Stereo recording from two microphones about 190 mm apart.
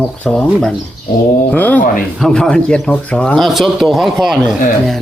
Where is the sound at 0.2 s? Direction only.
5° left (ahead or behind).